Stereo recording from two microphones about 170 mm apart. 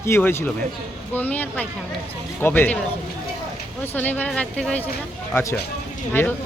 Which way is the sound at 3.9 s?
10° left (ahead or behind).